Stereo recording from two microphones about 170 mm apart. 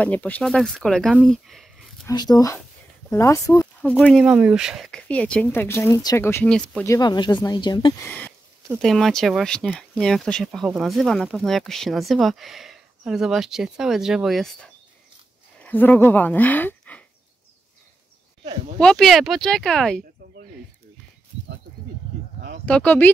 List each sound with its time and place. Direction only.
0.0 s speech: 10° left (ahead or behind)
2.0 s speech: 20° left (ahead or behind)
4.0 s speech: centre (ahead or behind)
6.9 s speech: 25° left (ahead or behind)
8.0 s a woman's voice: 10° left (ahead or behind)
18.8 s speech: 5° left (ahead or behind)
22.7 s speech: 10° left (ahead or behind)